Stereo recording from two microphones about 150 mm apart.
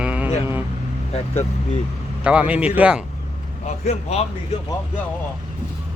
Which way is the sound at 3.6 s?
45° left (ahead or behind).